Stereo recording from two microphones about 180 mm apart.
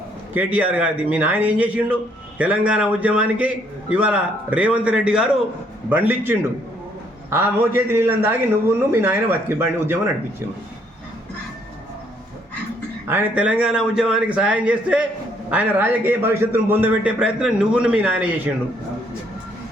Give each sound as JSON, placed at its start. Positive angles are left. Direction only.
{"t": 0.3, "sound": "a man's voice", "side_deg": -10}
{"t": 13.1, "sound": "a man's voice", "side_deg": -10}